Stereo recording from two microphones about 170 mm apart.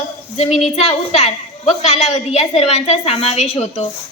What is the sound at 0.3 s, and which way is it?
A woman's voice, 40° left (ahead or behind).